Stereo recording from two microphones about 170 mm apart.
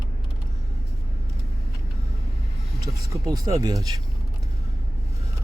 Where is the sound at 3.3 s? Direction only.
20° right (ahead or behind).